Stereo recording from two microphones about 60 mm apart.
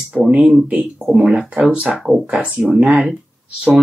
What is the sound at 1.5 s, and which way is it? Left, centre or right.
Speech, right.